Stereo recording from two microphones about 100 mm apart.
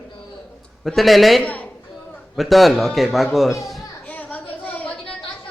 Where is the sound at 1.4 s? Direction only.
15° left (ahead or behind).